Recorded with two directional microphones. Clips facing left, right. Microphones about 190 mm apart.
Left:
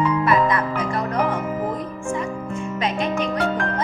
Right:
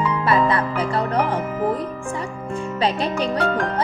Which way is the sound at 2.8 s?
35° right (ahead or behind).